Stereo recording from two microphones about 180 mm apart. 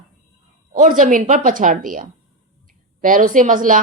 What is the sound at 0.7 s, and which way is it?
A woman's voice, 45° right (ahead or behind).